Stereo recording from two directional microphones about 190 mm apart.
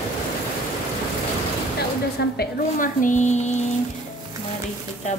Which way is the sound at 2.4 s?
45° left (ahead or behind).